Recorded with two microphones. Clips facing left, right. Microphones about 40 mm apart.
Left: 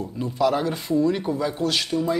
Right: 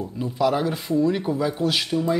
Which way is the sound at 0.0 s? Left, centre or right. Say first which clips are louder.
Even; centre.